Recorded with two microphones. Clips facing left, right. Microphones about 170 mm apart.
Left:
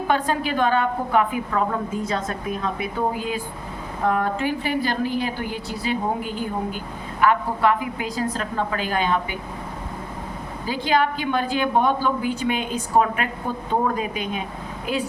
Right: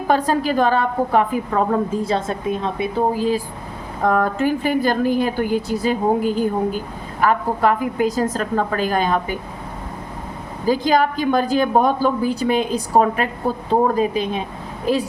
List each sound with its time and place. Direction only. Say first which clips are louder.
0.1 s a woman's voice: right 5 dB; 40° right (ahead or behind)
10.7 s a woman's voice: right 5 dB; 40° right (ahead or behind)